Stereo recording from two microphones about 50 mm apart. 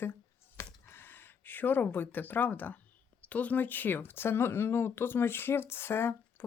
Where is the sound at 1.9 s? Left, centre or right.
Left.